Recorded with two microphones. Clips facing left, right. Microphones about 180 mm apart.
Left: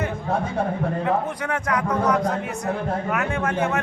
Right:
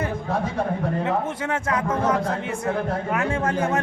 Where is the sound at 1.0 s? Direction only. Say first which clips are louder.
Left 1 dB; 25° right (ahead or behind).